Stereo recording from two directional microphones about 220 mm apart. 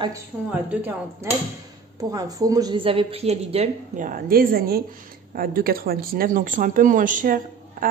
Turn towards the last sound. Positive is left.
turn(degrees=-40)  # may be behind; listen again after turning